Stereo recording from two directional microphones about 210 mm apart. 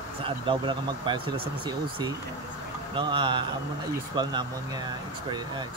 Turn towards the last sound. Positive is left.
turn(degrees=-20)  # may be behind; listen again after turning